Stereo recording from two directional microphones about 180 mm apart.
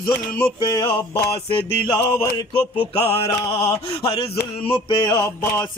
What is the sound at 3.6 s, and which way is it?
Mantra, 25° left (ahead or behind).